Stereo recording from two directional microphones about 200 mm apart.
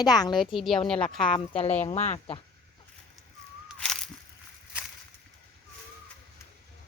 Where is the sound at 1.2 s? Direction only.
25° left (ahead or behind).